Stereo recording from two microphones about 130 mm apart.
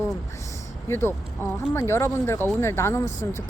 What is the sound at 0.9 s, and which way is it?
Speech, 20° left (ahead or behind).